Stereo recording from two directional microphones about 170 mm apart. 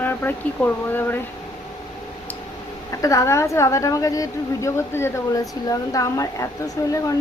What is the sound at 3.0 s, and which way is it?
A woman's voice, 20° left (ahead or behind).